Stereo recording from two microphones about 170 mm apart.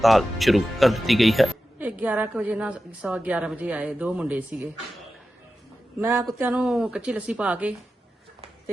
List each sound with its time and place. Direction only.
0.0 s speech: centre (ahead or behind)
6.0 s speech: 15° right (ahead or behind)